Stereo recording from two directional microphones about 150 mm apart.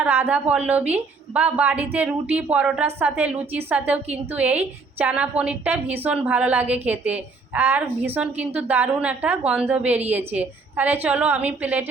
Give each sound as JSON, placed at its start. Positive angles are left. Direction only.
{"t": 0.0, "sound": "a woman's voice", "side_deg": -10}